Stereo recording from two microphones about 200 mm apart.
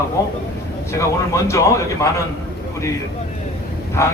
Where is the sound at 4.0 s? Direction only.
15° left (ahead or behind).